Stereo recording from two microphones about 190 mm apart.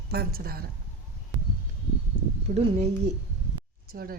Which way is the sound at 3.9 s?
50° right (ahead or behind).